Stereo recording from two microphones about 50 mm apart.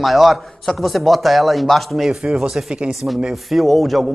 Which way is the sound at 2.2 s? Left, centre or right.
Centre.